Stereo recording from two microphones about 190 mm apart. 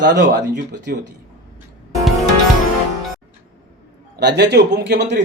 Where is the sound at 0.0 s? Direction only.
65° right (ahead or behind).